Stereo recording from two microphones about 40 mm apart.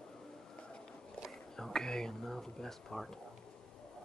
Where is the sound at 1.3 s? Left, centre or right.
Centre.